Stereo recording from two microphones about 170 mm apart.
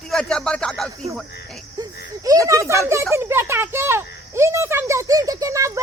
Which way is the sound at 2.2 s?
20° right (ahead or behind).